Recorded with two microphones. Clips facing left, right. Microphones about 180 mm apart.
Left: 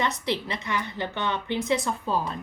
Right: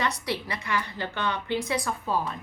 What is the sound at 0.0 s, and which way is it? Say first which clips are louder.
A woman's voice: left 2 dB; 25° left (ahead or behind).